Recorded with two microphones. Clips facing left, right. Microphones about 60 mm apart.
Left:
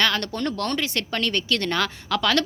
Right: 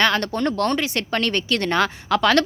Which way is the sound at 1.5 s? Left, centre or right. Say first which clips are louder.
Right 4 dB; right.